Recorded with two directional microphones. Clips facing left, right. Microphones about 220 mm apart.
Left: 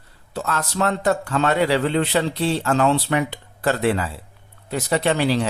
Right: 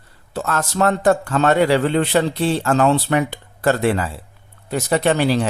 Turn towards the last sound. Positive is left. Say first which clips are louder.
# right 3 dB
turn(degrees=-45)  # may be behind; listen again after turning